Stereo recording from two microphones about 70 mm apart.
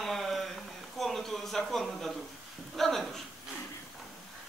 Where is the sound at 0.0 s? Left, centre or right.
Centre.